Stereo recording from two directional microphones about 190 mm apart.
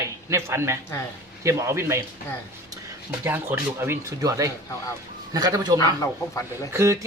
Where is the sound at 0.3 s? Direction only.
15° right (ahead or behind).